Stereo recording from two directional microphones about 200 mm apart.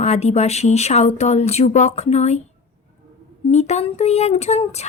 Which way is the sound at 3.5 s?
35° left (ahead or behind).